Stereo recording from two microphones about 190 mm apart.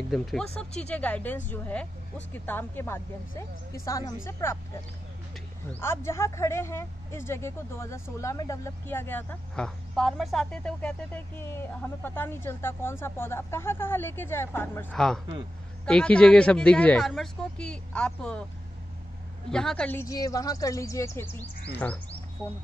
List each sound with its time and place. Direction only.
0.1 s speech: centre (ahead or behind)
5.7 s speech: 10° left (ahead or behind)
19.5 s speech: 5° left (ahead or behind)